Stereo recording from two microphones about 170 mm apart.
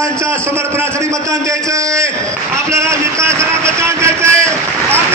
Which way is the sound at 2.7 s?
15° right (ahead or behind).